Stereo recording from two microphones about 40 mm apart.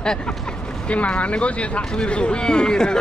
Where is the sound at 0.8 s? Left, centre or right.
Left.